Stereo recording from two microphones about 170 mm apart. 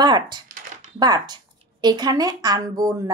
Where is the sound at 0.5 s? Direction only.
45° right (ahead or behind).